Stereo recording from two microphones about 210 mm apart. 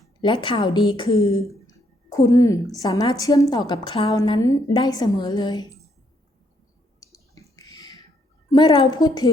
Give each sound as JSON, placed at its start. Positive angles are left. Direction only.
{"t": 0.2, "sound": "a woman's voice", "side_deg": 25}
{"t": 7.0, "sound": "a sound", "side_deg": 15}
{"t": 8.4, "sound": "a woman's voice", "side_deg": 20}